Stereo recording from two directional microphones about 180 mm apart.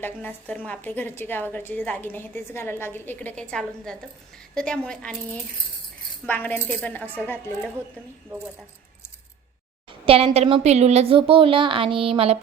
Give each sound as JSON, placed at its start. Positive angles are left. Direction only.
{"t": 0.0, "sound": "a woman's voice", "side_deg": 10}
{"t": 10.1, "sound": "a woman's voice", "side_deg": -35}